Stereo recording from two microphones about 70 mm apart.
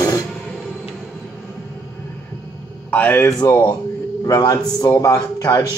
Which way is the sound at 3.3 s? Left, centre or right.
Left.